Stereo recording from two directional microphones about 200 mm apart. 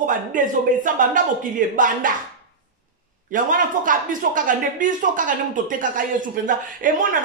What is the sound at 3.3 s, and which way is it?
Speech, 40° right (ahead or behind).